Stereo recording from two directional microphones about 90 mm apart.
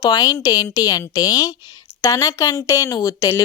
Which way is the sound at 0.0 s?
45° left (ahead or behind).